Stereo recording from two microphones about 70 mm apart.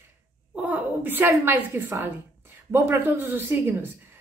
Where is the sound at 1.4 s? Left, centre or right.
Right.